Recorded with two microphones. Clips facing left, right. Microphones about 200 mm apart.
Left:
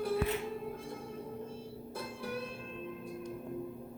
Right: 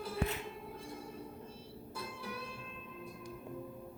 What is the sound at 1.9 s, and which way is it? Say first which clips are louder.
Music: left 4 dB; 50° left (ahead or behind).